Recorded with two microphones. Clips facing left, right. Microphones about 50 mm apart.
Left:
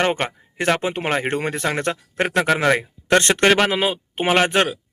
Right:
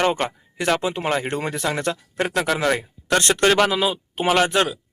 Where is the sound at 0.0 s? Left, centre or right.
Left.